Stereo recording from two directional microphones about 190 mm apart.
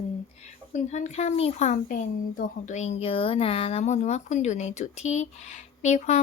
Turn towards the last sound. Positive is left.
turn(degrees=35)  # may be behind; listen again after turning